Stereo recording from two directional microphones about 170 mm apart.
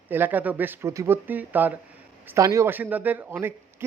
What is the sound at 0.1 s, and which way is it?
Speech, 10° right (ahead or behind).